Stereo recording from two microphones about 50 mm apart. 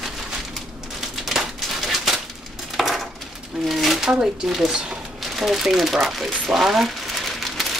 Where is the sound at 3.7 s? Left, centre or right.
Centre.